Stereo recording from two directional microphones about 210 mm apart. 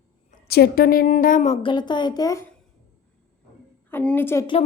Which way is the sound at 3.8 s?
10° left (ahead or behind).